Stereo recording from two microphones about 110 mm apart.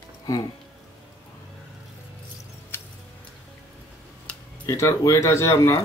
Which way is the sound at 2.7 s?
20° left (ahead or behind).